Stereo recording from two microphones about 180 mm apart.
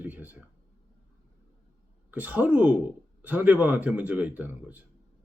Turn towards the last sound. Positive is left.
turn(degrees=-10)  # may be behind; listen again after turning